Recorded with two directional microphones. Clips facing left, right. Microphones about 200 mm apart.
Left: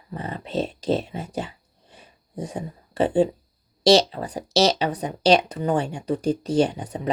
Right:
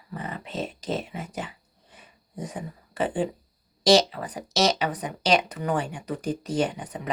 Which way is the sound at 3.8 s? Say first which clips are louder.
Left 2 dB; 30° left (ahead or behind).